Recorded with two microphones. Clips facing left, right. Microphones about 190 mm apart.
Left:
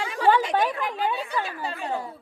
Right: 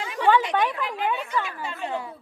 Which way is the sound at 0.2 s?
40° left (ahead or behind).